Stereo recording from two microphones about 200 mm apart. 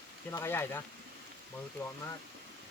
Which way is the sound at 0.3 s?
10° left (ahead or behind).